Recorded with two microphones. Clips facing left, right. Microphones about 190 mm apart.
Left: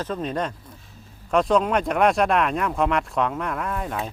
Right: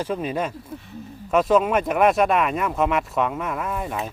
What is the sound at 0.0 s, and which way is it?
Speech, 10° right (ahead or behind).